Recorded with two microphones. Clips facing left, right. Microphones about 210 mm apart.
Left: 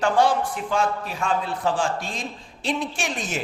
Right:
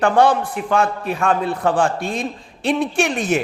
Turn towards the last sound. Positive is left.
turn(degrees=-60)  # may be behind; listen again after turning